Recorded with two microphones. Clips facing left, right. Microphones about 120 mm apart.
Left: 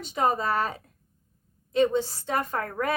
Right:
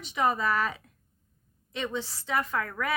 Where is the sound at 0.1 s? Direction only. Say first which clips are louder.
Left 2 dB; 40° left (ahead or behind).